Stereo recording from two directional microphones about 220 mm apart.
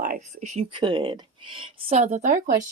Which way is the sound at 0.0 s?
35° right (ahead or behind).